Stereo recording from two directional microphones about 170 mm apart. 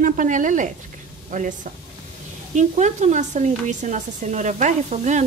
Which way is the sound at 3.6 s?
45° right (ahead or behind).